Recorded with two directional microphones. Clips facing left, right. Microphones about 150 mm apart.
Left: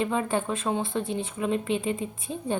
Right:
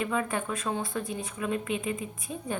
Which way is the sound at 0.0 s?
30° left (ahead or behind).